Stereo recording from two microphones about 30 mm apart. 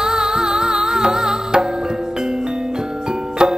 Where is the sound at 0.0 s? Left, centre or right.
Centre.